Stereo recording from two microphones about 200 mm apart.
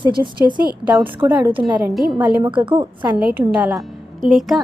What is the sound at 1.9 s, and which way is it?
Speech, centre (ahead or behind).